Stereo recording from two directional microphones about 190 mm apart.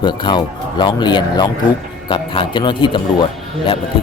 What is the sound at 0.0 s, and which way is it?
Speech, 25° left (ahead or behind).